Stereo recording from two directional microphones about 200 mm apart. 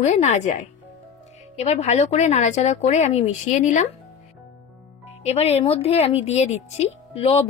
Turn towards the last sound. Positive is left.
turn(degrees=30)  # may be behind; listen again after turning